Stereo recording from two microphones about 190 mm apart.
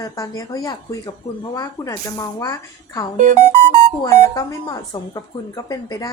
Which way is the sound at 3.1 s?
40° right (ahead or behind).